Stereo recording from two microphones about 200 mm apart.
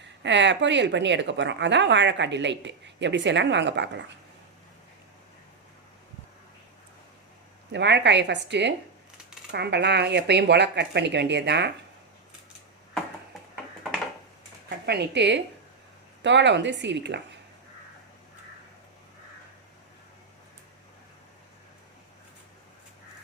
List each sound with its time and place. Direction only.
0.2 s a woman's voice: 65° right (ahead or behind)
7.7 s a woman's voice: 60° right (ahead or behind)
14.8 s a woman's voice: 60° right (ahead or behind)